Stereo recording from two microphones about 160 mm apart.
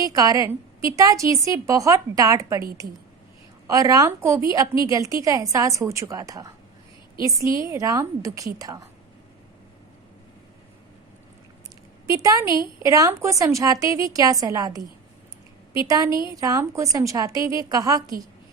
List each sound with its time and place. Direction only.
0.0 s a woman's voice: 20° right (ahead or behind)
3.7 s a woman's voice: 20° right (ahead or behind)
12.0 s a woman's voice: 20° right (ahead or behind)
16.0 s a woman's voice: 30° left (ahead or behind)
16.3 s a woman's voice: 20° right (ahead or behind)